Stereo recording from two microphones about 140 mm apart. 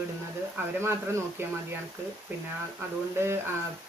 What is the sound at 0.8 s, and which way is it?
Speech, 20° right (ahead or behind).